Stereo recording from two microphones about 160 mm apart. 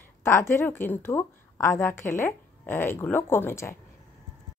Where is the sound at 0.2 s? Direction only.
15° left (ahead or behind).